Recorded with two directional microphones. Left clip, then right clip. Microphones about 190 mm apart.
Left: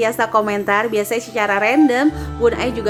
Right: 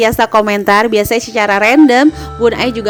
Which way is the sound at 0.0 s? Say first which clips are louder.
Right 6 dB; 45° right (ahead or behind).